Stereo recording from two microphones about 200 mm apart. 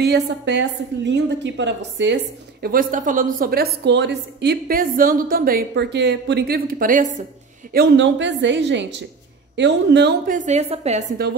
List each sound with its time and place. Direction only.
0.0 s a woman's voice: 60° right (ahead or behind)
2.6 s a woman's voice: 45° right (ahead or behind)
7.7 s a woman's voice: 55° right (ahead or behind)
10.3 s a woman's voice: 35° right (ahead or behind)